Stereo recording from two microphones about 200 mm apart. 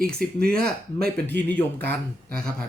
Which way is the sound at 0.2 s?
50° right (ahead or behind).